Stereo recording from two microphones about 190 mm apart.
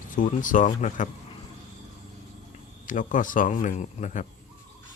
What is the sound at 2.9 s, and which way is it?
Speech, 45° left (ahead or behind).